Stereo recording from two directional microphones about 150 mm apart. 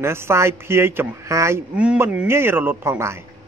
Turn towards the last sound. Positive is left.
turn(degrees=-15)  # may be behind; listen again after turning